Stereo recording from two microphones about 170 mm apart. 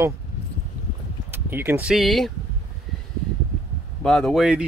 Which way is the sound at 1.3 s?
15° right (ahead or behind).